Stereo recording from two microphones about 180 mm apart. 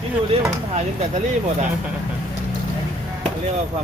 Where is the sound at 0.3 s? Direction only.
35° right (ahead or behind).